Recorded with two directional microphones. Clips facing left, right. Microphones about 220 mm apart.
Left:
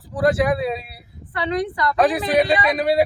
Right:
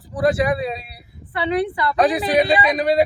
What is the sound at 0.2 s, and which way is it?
A woman's voice, centre (ahead or behind).